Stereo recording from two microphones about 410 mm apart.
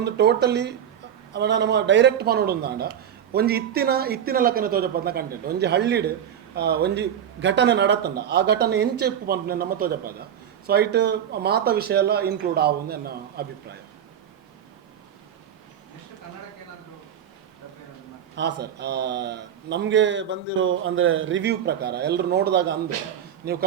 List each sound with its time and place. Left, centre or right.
0.0 s a man's voice: right
18.3 s a man's voice: right